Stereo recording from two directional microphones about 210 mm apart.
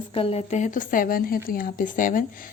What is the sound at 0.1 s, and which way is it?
Speech, 25° left (ahead or behind).